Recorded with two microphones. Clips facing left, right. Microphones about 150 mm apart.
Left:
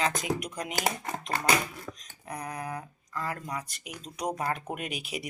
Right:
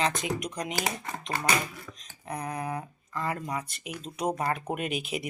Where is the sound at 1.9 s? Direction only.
40° left (ahead or behind).